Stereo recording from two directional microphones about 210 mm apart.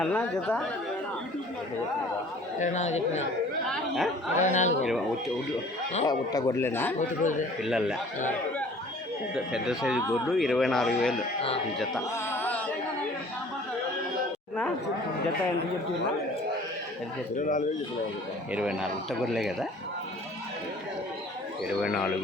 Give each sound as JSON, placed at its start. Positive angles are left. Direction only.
{"t": 0.0, "sound": "a man's voice", "side_deg": 5}
{"t": 2.6, "sound": "a man's voice", "side_deg": 35}
{"t": 3.7, "sound": "chatter", "side_deg": 0}
{"t": 4.4, "sound": "a man's voice", "side_deg": 35}
{"t": 6.1, "sound": "speech", "side_deg": 20}
{"t": 7.0, "sound": "a man's voice", "side_deg": 35}
{"t": 7.6, "sound": "a man's voice", "side_deg": 0}
{"t": 9.3, "sound": "a man's voice", "side_deg": -5}
{"t": 12.1, "sound": "music", "side_deg": 10}
{"t": 17.3, "sound": "a man's voice", "side_deg": 40}
{"t": 18.5, "sound": "a man's voice", "side_deg": -5}